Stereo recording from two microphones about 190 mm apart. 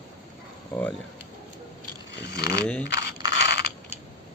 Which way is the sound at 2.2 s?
60° left (ahead or behind).